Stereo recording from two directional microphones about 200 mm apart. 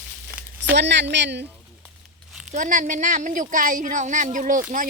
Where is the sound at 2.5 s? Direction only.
40° right (ahead or behind).